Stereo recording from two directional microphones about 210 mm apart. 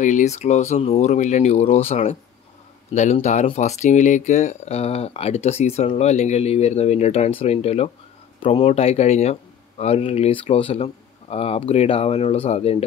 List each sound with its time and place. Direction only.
0.0 s speech: 35° left (ahead or behind)